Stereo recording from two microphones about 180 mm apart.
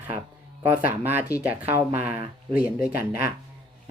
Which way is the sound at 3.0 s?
55° left (ahead or behind).